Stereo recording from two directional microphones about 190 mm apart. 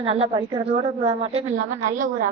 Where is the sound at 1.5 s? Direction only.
45° right (ahead or behind).